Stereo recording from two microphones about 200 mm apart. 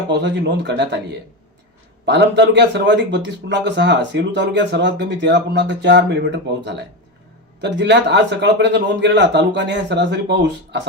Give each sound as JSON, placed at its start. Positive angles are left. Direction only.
{"t": 0.1, "sound": "speech", "side_deg": -60}
{"t": 2.0, "sound": "speech", "side_deg": -60}